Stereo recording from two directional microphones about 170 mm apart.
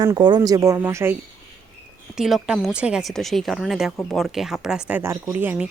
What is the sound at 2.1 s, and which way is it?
Speech, 5° right (ahead or behind).